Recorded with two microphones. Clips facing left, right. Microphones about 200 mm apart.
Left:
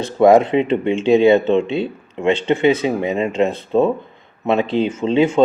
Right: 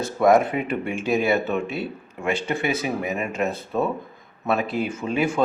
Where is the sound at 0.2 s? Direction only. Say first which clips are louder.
Left 6 dB; 25° left (ahead or behind).